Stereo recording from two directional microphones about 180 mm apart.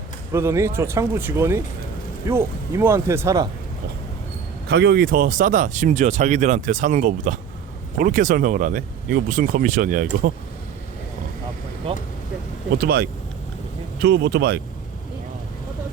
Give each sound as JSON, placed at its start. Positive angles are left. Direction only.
{"t": 0.3, "sound": "speech", "side_deg": -15}
{"t": 4.7, "sound": "speech", "side_deg": -65}
{"t": 12.7, "sound": "speech", "side_deg": -60}